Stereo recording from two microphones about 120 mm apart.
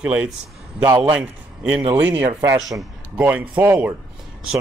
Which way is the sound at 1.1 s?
10° right (ahead or behind).